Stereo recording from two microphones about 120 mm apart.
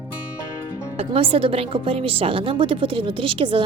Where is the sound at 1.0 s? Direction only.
50° right (ahead or behind).